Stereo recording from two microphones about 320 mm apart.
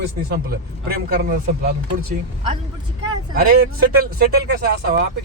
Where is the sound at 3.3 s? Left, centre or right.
Right.